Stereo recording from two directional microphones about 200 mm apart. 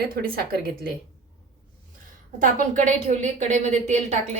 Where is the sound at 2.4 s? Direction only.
40° right (ahead or behind).